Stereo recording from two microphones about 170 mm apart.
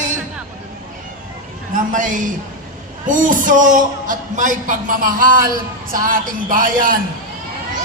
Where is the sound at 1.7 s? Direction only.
50° right (ahead or behind).